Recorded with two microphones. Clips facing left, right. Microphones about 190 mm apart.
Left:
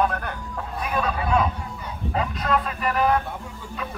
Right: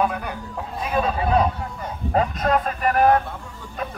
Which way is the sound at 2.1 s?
45° right (ahead or behind).